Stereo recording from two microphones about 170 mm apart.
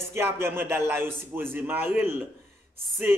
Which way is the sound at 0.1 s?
15° right (ahead or behind).